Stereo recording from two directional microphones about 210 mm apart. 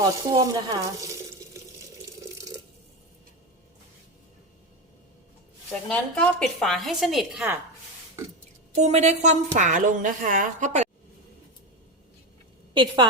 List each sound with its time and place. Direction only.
0.3 s speech: 20° right (ahead or behind)
5.9 s a woman's voice: 5° left (ahead or behind)
8.7 s a woman's voice: 30° right (ahead or behind)
12.7 s a woman's voice: 20° right (ahead or behind)